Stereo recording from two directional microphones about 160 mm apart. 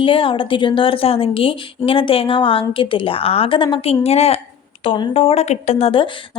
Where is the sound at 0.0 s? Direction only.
35° left (ahead or behind).